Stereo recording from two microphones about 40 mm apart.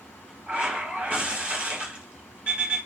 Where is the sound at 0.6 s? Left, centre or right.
Centre.